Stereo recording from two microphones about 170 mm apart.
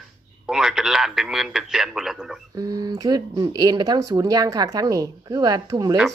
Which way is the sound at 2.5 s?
20° right (ahead or behind).